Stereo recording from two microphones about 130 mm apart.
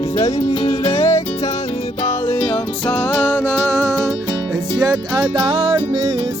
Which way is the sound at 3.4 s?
20° right (ahead or behind).